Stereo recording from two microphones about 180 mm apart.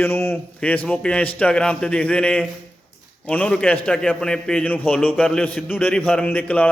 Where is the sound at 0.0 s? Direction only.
15° left (ahead or behind).